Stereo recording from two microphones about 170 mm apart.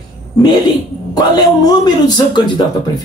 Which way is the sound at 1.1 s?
25° left (ahead or behind).